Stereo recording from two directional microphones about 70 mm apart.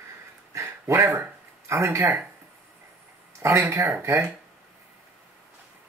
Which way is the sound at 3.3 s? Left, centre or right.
Right.